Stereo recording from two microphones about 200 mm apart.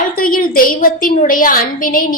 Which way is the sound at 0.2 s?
45° left (ahead or behind).